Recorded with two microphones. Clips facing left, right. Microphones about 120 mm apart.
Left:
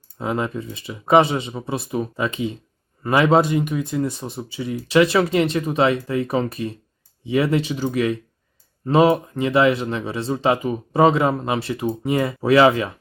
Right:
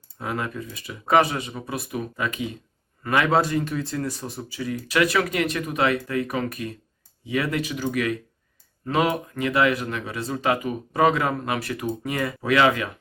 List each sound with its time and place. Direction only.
0.2 s speech: 25° left (ahead or behind)